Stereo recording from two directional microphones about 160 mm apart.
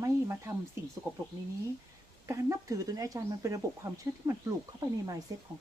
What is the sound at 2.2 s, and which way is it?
Speech, 20° right (ahead or behind).